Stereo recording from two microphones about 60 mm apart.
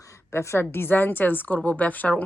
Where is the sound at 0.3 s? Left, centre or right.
Left.